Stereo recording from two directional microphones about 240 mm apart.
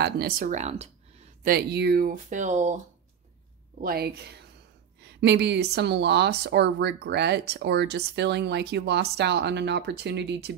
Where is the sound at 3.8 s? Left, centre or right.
Right.